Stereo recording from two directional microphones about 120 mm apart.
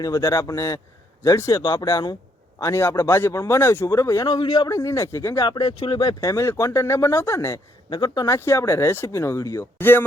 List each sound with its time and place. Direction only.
0.0 s speech: 30° left (ahead or behind)
4.7 s speech: 25° left (ahead or behind)
5.4 s speech: 40° left (ahead or behind)
7.9 s speech: 35° left (ahead or behind)
8.4 s speech: 20° left (ahead or behind)